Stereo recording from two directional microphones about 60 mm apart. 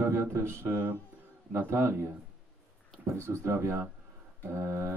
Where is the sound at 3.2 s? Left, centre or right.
Right.